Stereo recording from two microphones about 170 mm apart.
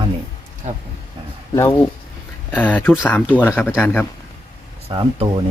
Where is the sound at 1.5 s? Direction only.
15° left (ahead or behind).